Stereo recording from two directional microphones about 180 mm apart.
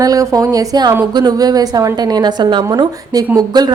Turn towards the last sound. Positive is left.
turn(degrees=-20)  # may be behind; listen again after turning